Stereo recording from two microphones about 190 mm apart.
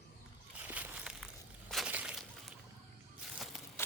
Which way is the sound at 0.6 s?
10° right (ahead or behind).